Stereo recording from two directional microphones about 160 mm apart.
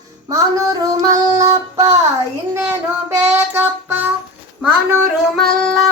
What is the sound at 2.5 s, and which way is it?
Child singing, 15° right (ahead or behind).